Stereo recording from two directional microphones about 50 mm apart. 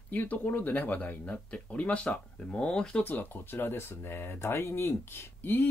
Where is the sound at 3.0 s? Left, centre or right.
Left.